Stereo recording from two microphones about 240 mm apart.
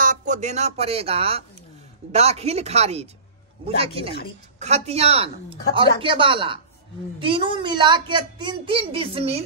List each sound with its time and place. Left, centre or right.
0.0 s a child's voice: right